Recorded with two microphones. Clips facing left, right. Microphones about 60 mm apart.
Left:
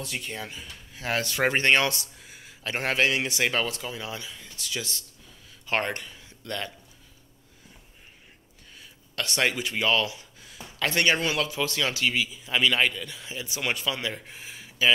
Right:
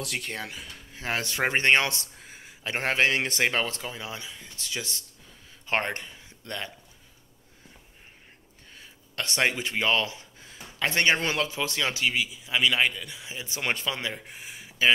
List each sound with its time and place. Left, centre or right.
0.0 s speech: right
0.9 s speech: right
2.4 s speech: right
8.7 s speech: right
12.4 s a man's voice: centre
13.5 s speech: right
14.1 s a sound: right